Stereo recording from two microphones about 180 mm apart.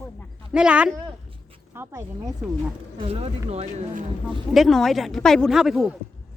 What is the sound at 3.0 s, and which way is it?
Speech, 35° right (ahead or behind).